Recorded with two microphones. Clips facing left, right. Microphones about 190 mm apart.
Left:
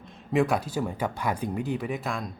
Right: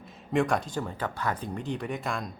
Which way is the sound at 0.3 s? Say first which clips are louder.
Left 2 dB; 5° left (ahead or behind).